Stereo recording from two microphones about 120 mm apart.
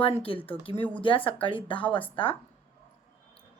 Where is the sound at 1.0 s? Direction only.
45° left (ahead or behind).